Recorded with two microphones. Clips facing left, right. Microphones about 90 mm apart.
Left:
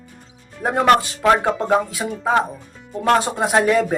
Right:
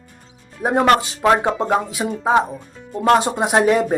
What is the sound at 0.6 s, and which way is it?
Speech, 20° right (ahead or behind).